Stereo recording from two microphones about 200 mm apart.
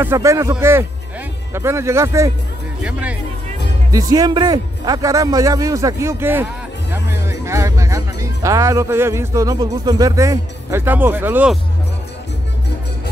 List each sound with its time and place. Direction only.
0.0 s a man's voice: 15° right (ahead or behind)
3.9 s a man's voice: 20° right (ahead or behind)